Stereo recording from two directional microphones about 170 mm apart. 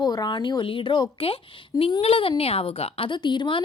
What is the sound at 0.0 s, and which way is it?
A woman's voice, 25° left (ahead or behind).